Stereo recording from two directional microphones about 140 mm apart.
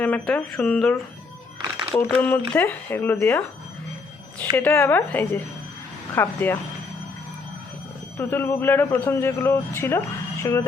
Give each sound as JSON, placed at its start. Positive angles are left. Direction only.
{"t": 0.0, "sound": "speech", "side_deg": 10}
{"t": 2.0, "sound": "speech", "side_deg": 15}
{"t": 4.5, "sound": "speech", "side_deg": 15}
{"t": 8.2, "sound": "speech", "side_deg": 15}